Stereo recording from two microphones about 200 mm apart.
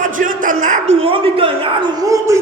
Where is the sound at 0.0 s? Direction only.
40° right (ahead or behind).